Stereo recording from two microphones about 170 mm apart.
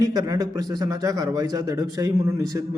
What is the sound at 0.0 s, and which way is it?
A man's voice, 20° right (ahead or behind).